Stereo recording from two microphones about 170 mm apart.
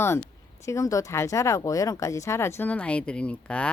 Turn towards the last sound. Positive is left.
turn(degrees=5)  # may be behind; listen again after turning